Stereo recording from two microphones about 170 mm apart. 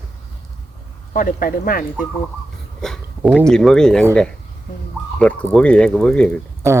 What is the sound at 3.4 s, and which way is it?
Speech, 5° left (ahead or behind).